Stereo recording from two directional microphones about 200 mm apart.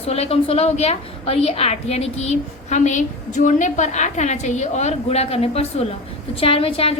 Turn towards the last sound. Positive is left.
turn(degrees=30)  # may be behind; listen again after turning